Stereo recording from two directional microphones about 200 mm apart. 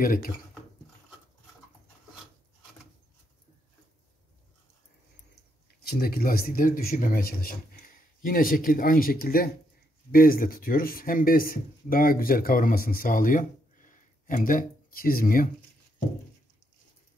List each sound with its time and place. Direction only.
0.0 s speech: 45° left (ahead or behind)
5.8 s speech: 50° left (ahead or behind)